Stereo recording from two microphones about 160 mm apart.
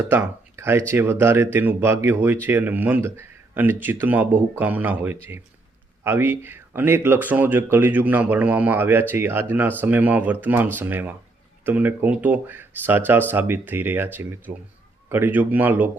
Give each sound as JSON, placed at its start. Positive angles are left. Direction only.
{"t": 0.1, "sound": "speech", "side_deg": -15}